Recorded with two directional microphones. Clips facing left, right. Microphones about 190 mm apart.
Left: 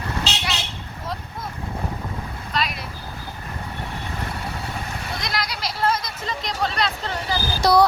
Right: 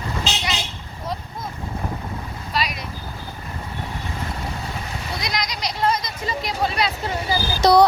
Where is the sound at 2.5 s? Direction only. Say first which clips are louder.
Right 1 dB; 5° right (ahead or behind).